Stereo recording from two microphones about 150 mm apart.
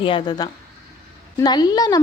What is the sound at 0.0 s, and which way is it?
A woman's voice, 30° left (ahead or behind).